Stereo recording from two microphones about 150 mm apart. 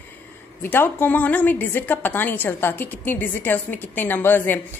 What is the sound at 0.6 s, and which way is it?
A woman's voice, 15° left (ahead or behind).